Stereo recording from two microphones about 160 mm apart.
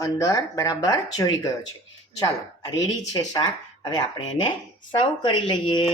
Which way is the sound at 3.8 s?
30° left (ahead or behind).